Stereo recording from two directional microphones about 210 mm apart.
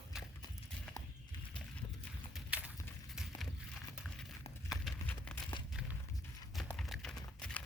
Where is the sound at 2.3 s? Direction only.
5° right (ahead or behind).